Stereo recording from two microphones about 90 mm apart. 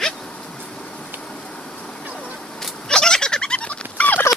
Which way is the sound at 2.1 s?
5° left (ahead or behind).